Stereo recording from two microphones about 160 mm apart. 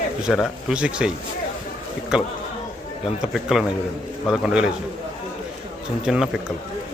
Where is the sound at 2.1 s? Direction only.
5° right (ahead or behind).